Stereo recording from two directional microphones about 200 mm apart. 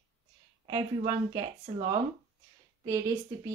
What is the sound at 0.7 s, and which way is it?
A woman's voice, 20° right (ahead or behind).